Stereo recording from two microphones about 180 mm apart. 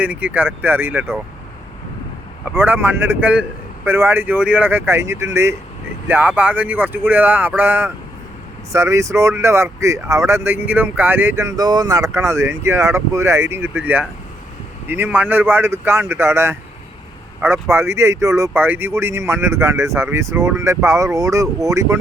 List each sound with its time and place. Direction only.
0.0 s speech: 10° right (ahead or behind)
2.4 s speech: 10° right (ahead or behind)